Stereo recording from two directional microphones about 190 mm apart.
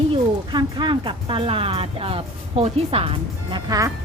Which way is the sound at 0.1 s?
25° right (ahead or behind).